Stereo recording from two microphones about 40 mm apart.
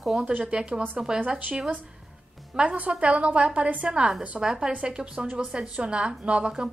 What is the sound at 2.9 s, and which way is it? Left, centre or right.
A woman's voice, right.